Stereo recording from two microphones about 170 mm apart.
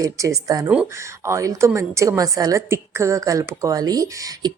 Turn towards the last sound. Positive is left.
turn(degrees=-25)  # may be behind; listen again after turning